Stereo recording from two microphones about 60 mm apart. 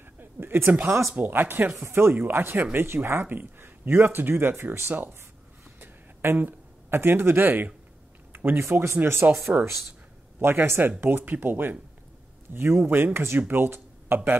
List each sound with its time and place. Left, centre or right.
0.2 s a sound: right
1.1 s speech: right
2.1 s speech: right
5.8 s a sound: right
8.3 s speech: right
9.5 s speech: right
10.4 s speech: right